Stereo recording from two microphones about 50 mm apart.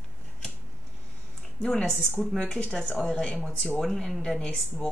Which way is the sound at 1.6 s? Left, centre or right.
Centre.